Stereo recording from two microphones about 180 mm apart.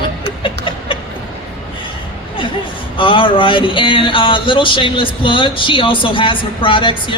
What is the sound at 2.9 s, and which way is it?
Speech, 30° left (ahead or behind).